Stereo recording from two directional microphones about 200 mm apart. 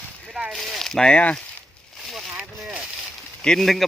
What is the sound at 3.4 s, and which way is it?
Speech, centre (ahead or behind).